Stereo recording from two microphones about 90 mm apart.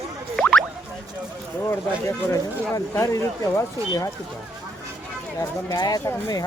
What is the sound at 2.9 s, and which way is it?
Speech, 35° left (ahead or behind).